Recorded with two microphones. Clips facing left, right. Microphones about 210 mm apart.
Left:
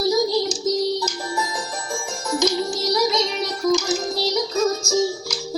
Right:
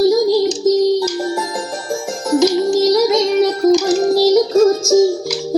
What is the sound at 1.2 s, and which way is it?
Music, 45° right (ahead or behind).